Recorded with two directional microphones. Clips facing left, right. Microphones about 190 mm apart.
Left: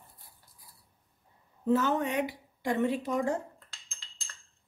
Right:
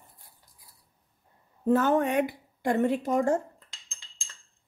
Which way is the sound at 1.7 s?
50° right (ahead or behind).